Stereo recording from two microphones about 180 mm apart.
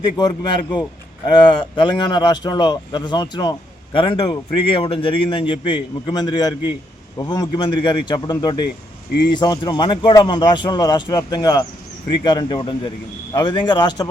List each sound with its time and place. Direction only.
0.2 s a man's voice: 25° left (ahead or behind)